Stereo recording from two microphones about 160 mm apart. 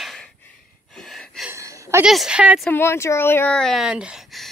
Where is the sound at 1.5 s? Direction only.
20° right (ahead or behind).